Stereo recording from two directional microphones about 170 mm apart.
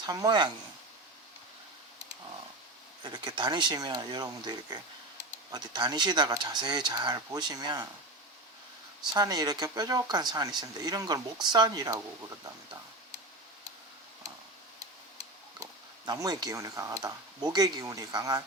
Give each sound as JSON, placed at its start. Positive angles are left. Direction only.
{"t": 0.0, "sound": "speech", "side_deg": -25}
{"t": 3.0, "sound": "speech", "side_deg": -25}
{"t": 9.1, "sound": "speech", "side_deg": -25}
{"t": 15.6, "sound": "speech", "side_deg": -20}